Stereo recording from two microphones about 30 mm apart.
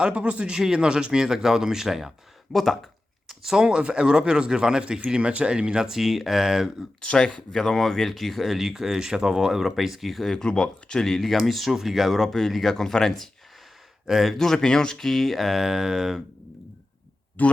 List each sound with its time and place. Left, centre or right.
0.0 s speech: right
0.7 s speech: right; by 2.1 s centre
2.5 s speech: centre
3.6 s speech: right
5.3 s speech: right
5.8 s speech: centre
7.0 s speech: left; by 8.5 s centre
8.5 s speech: centre
10.3 s speech: left
11.2 s speech: centre
14.1 s speech: centre
14.3 s speech: centre
15.6 s speech: right
17.4 s speech: left